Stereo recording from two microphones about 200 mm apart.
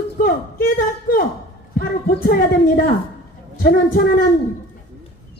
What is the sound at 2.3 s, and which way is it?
Speech, 45° left (ahead or behind).